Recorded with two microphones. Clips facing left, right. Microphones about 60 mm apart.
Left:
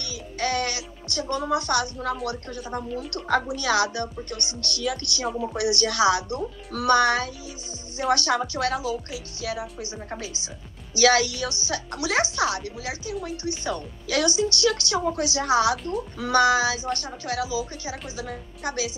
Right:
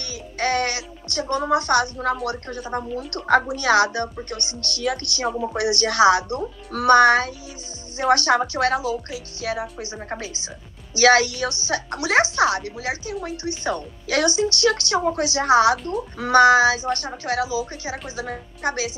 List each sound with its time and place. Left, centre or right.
0.0 s speech: right